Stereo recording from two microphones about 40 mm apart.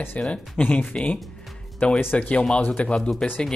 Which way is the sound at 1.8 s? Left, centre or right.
Left.